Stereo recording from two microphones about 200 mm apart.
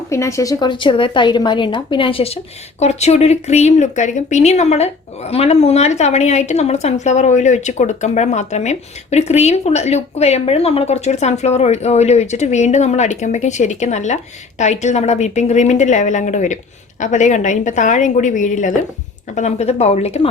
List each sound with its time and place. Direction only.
0.1 s a woman's voice: 15° left (ahead or behind); by 20.3 s 30° left (ahead or behind)